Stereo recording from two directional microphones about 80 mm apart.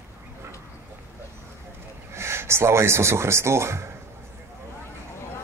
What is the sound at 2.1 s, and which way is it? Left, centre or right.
Speech, right.